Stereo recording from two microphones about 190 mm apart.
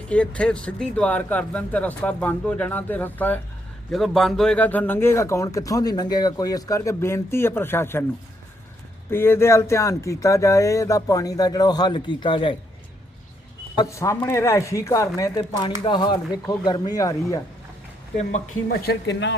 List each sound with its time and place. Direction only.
0.1 s speech: 5° left (ahead or behind)
9.0 s speech: 10° left (ahead or behind)
13.7 s speech: 15° left (ahead or behind)
18.8 s speech: 60° left (ahead or behind)